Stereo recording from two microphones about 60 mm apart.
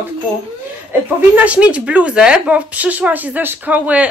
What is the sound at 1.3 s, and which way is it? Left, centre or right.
Speech, right.